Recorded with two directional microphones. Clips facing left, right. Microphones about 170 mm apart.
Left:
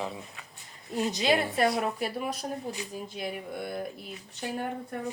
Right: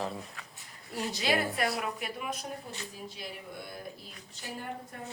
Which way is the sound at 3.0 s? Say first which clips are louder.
Left 7 dB; 55° left (ahead or behind).